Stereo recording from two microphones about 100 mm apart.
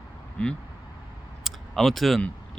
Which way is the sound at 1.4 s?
Centre (ahead or behind).